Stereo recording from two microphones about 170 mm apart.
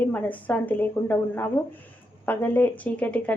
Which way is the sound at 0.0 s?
10° left (ahead or behind).